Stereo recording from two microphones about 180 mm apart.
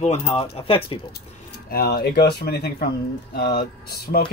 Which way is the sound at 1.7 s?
60° left (ahead or behind).